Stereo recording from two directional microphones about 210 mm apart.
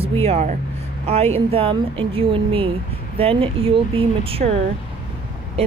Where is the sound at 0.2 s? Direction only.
30° right (ahead or behind).